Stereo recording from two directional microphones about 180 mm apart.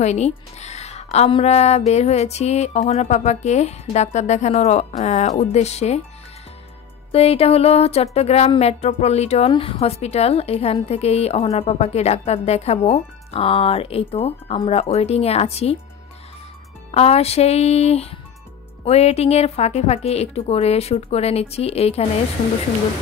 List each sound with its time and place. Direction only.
0.0 s speech: 40° left (ahead or behind)
7.1 s speech: 35° left (ahead or behind)
16.9 s speech: 35° left (ahead or behind)